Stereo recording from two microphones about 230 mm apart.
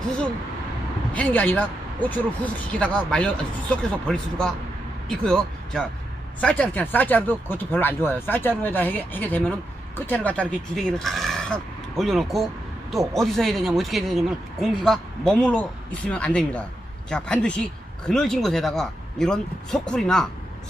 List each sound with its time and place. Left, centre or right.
1.1 s speech: centre